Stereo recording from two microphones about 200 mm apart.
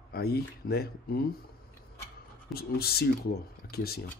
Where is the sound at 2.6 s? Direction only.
50° left (ahead or behind).